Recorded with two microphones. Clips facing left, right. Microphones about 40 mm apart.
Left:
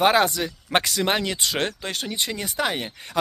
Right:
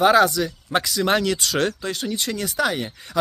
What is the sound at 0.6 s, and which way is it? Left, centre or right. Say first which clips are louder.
Speech: left 2 dB; left.